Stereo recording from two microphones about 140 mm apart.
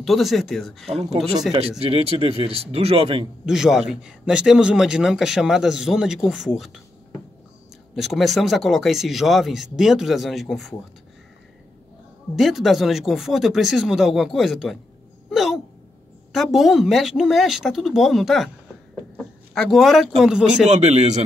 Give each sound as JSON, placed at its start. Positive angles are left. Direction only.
{"t": 0.0, "sound": "a man's voice", "side_deg": 0}
{"t": 0.8, "sound": "speech", "side_deg": -45}
{"t": 3.4, "sound": "a man's voice", "side_deg": -5}
{"t": 7.9, "sound": "a man's voice", "side_deg": 0}
{"t": 12.4, "sound": "a man's voice", "side_deg": 0}
{"t": 15.2, "sound": "a sound", "side_deg": 0}
{"t": 16.3, "sound": "a man's voice", "side_deg": 0}
{"t": 19.5, "sound": "a man's voice", "side_deg": 0}
{"t": 20.6, "sound": "speech", "side_deg": -50}